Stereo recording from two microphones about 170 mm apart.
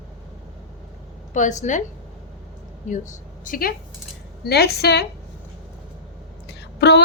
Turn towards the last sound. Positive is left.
turn(degrees=80)